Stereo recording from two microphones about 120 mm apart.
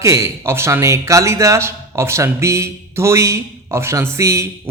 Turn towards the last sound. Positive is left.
turn(degrees=-25)  # may be behind; listen again after turning